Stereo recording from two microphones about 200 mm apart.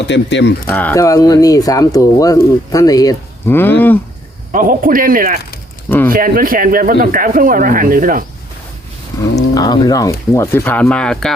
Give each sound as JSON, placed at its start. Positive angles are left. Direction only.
{"t": 0.0, "sound": "speech", "side_deg": 60}
{"t": 0.7, "sound": "speech", "side_deg": 10}
{"t": 4.5, "sound": "speech", "side_deg": -45}
{"t": 9.6, "sound": "speech", "side_deg": 20}